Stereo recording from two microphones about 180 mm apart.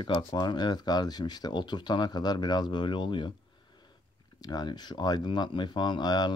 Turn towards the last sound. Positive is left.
turn(degrees=25)  # may be behind; listen again after turning